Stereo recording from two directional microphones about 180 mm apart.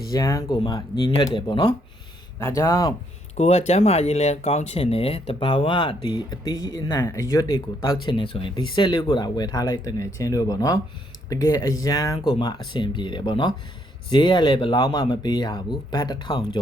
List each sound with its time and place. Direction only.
0.1 s speech: 20° left (ahead or behind)
3.3 s speech: 40° left (ahead or behind)